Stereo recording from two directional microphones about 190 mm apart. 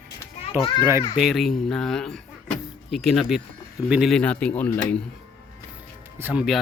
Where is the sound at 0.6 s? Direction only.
30° left (ahead or behind).